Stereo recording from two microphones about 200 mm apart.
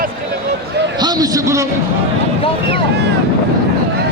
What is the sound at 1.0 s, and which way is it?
Speech, 20° right (ahead or behind).